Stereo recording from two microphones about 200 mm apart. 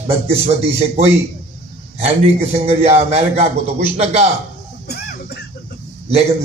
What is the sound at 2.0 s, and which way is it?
A man's voice, 30° right (ahead or behind).